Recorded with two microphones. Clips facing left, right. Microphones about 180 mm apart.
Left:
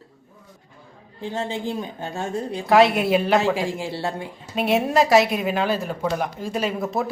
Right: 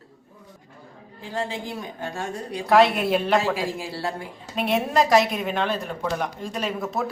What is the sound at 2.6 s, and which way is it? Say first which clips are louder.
Speech: left 1 dB; centre (ahead or behind).